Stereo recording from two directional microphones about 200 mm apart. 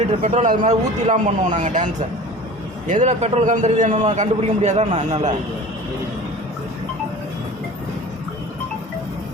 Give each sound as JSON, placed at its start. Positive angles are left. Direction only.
{"t": 0.2, "sound": "a man's voice", "side_deg": -35}